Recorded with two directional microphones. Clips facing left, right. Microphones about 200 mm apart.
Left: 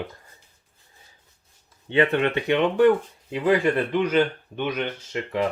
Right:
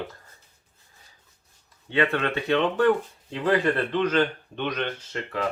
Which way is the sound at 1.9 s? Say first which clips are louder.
Left 4 dB; 20° left (ahead or behind).